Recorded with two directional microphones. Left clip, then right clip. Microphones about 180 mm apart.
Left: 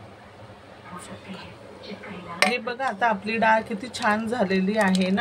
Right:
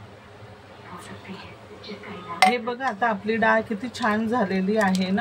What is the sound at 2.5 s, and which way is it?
Speech, 40° left (ahead or behind).